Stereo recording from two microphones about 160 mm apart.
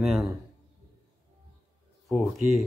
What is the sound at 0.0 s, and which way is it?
Speech, centre (ahead or behind).